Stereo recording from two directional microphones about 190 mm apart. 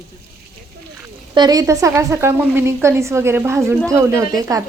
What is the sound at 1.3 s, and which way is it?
Speech, 20° right (ahead or behind).